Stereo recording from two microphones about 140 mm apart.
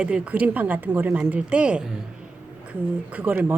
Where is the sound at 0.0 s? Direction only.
10° right (ahead or behind).